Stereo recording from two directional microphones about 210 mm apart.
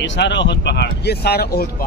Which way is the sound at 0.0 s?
60° left (ahead or behind).